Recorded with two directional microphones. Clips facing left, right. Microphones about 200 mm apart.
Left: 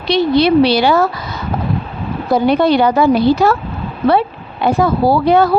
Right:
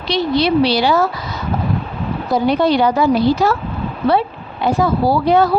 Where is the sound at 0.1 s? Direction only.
55° left (ahead or behind).